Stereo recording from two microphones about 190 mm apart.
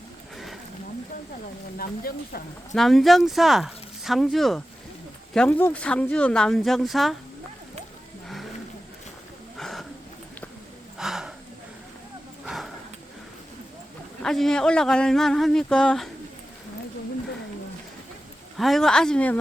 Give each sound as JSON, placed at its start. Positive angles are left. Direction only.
{"t": 1.8, "sound": "speech", "side_deg": 50}
{"t": 2.7, "sound": "speech", "side_deg": 0}
{"t": 9.6, "sound": "a sound", "side_deg": 0}
{"t": 10.9, "sound": "gasp", "side_deg": 0}
{"t": 12.5, "sound": "dog", "side_deg": 0}
{"t": 14.2, "sound": "speech", "side_deg": 5}
{"t": 18.5, "sound": "speech", "side_deg": 0}